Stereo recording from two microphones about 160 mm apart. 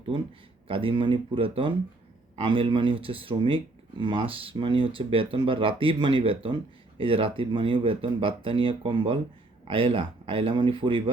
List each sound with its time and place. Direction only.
0.7 s speech: 35° right (ahead or behind)